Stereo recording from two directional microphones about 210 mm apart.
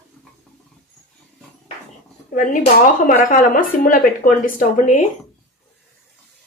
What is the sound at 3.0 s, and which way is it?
Speech, 40° left (ahead or behind).